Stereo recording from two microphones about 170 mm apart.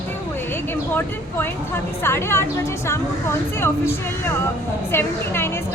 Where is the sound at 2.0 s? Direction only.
15° left (ahead or behind).